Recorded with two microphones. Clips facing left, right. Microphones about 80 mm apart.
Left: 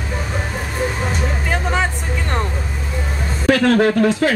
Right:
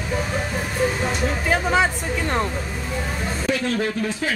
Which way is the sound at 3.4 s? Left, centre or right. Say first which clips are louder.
Left 10 dB; left.